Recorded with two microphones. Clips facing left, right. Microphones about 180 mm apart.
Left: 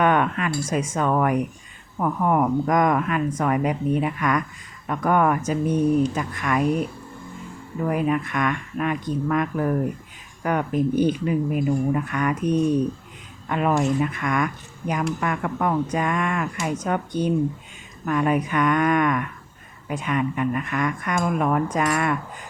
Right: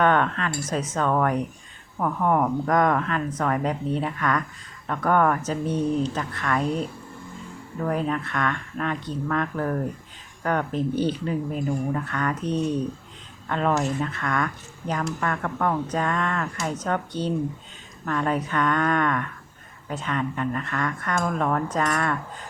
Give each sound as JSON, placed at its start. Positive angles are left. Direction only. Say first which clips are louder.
{"t": 0.0, "sound": "speech", "louder": "left 1 dB", "side_deg": 10}